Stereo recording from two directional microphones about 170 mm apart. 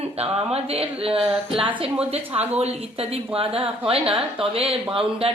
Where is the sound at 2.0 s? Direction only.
35° right (ahead or behind).